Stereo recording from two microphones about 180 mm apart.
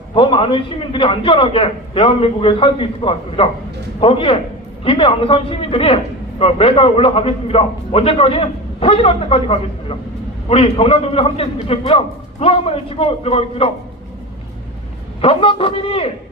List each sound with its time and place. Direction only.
0.1 s a man's voice: 30° left (ahead or behind)
15.2 s a man's voice: 30° left (ahead or behind)